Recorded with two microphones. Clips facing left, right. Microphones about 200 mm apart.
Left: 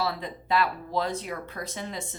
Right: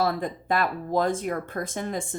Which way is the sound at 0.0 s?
50° right (ahead or behind).